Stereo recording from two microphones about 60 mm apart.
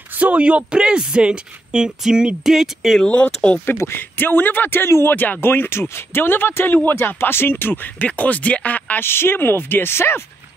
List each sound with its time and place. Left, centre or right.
0.2 s speech: right; by 3.0 s centre
3.0 s speech: centre
3.7 s a man's voice: left
5.1 s a man's voice: left
9.0 s a man's voice: left